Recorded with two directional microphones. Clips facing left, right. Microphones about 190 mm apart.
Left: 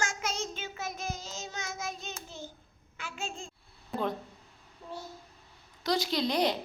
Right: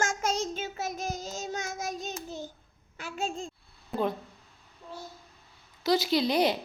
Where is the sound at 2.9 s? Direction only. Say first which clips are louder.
Right 6 dB; 40° right (ahead or behind).